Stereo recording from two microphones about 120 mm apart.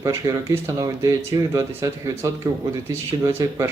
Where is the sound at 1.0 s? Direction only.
30° right (ahead or behind).